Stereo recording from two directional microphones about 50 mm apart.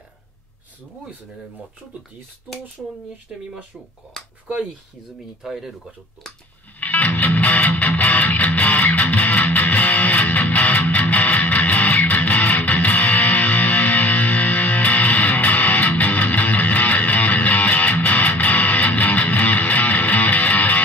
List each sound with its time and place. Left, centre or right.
3.3 s speech: centre
4.2 s speech: centre
5.4 s speech: centre
6.8 s music: left